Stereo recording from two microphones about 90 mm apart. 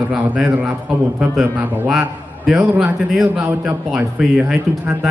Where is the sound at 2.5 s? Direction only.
Centre (ahead or behind).